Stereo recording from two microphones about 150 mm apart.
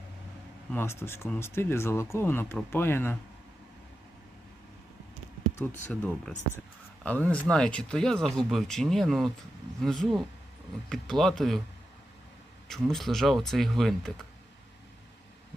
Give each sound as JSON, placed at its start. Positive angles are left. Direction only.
{"t": 0.7, "sound": "speech", "side_deg": 15}
{"t": 5.5, "sound": "speech", "side_deg": 10}
{"t": 12.6, "sound": "speech", "side_deg": 0}